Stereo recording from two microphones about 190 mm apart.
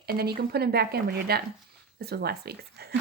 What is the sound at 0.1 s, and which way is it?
A woman's voice, 55° right (ahead or behind).